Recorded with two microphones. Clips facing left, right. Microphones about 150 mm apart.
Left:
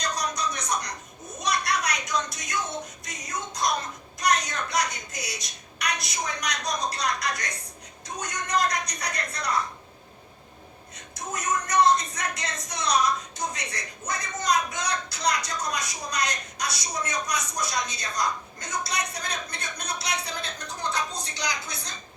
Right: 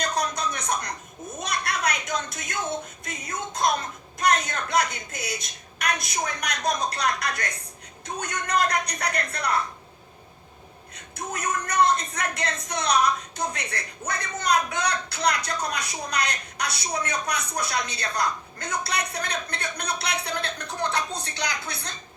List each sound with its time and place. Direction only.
0.0 s a sound: 55° right (ahead or behind)
3.0 s music: 55° right (ahead or behind)
4.2 s speech: 55° right (ahead or behind)
11.1 s speech: 60° right (ahead or behind)